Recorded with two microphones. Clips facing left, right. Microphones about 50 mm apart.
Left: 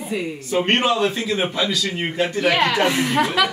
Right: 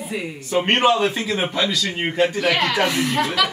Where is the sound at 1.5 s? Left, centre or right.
Centre.